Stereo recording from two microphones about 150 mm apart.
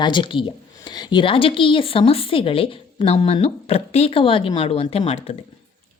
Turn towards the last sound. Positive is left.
turn(degrees=40)  # may be behind; listen again after turning